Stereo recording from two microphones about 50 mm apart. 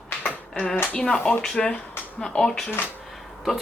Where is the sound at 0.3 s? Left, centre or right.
Centre.